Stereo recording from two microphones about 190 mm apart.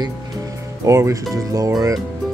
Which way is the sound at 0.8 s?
15° right (ahead or behind).